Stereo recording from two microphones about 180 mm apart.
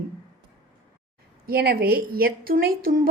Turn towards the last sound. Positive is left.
turn(degrees=-55)  # may be behind; listen again after turning